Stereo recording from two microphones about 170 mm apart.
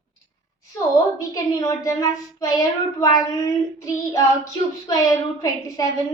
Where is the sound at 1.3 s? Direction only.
20° left (ahead or behind).